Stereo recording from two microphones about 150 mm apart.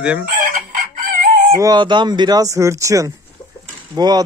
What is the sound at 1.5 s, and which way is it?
Speech, 25° right (ahead or behind).